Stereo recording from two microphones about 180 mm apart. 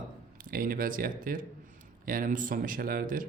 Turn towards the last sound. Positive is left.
turn(degrees=-50)  # may be behind; listen again after turning